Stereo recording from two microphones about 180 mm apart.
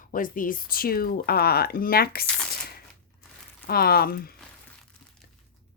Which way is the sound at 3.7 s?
55° left (ahead or behind).